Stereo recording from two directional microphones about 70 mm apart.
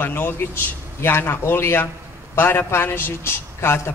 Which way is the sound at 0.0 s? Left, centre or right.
Left.